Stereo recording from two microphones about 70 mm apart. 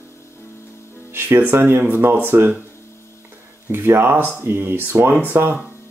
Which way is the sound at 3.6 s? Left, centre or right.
Right.